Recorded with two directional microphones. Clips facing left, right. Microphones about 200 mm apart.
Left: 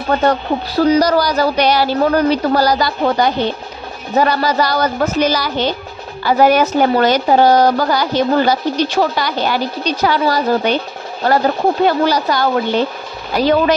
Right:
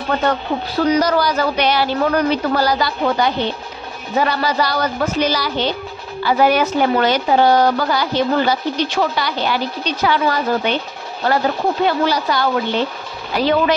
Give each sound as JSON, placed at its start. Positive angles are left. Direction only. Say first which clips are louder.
{"t": 0.8, "sound": "a woman's voice", "louder": "left 3 dB", "side_deg": 35}
{"t": 11.8, "sound": "a woman's voice", "louder": "left 2 dB", "side_deg": 45}